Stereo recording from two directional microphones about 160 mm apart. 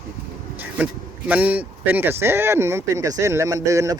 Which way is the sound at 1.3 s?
10° right (ahead or behind).